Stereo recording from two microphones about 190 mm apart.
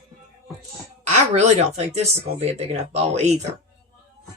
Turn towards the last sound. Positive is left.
turn(degrees=-35)  # may be behind; listen again after turning